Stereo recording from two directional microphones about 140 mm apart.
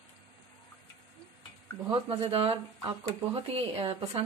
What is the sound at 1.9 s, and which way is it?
A woman's voice, 40° right (ahead or behind).